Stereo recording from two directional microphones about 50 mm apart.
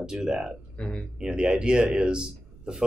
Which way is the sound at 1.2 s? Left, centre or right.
Centre.